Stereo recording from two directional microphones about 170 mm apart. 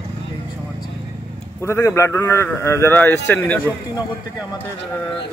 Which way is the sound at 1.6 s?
15° left (ahead or behind).